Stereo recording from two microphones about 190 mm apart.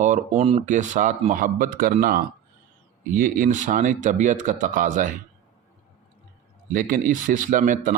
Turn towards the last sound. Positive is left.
turn(degrees=-45)  # may be behind; listen again after turning